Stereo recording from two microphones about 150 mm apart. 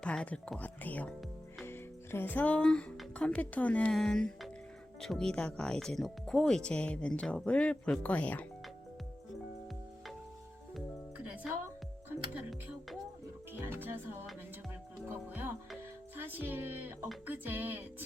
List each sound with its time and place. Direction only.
0.0 s speech: 5° left (ahead or behind)
10.8 s music: 10° right (ahead or behind)
13.5 s music: 15° right (ahead or behind)